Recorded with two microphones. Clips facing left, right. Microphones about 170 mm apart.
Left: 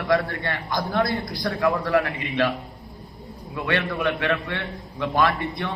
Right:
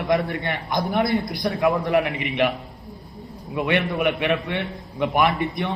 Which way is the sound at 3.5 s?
20° right (ahead or behind).